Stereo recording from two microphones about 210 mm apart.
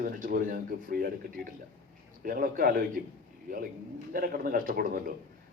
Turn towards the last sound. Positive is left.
turn(degrees=-40)  # may be behind; listen again after turning